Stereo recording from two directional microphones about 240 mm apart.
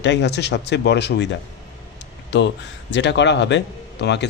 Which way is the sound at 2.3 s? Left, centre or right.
Left.